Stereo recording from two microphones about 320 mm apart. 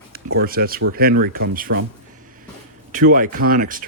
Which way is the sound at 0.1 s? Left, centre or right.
Right.